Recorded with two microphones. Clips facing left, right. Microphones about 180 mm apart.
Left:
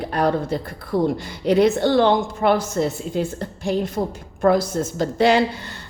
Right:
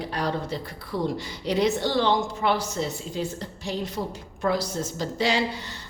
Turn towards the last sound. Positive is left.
turn(degrees=55)  # may be behind; listen again after turning